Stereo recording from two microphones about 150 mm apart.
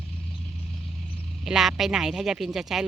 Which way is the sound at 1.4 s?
5° right (ahead or behind).